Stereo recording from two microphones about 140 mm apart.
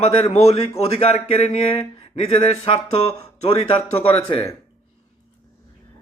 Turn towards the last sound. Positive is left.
turn(degrees=40)  # may be behind; listen again after turning